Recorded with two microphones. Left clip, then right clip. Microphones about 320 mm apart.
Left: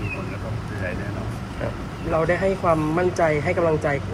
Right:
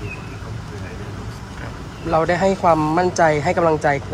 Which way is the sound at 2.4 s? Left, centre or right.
Right.